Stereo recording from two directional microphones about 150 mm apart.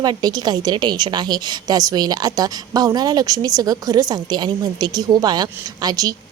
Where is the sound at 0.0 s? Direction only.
25° right (ahead or behind).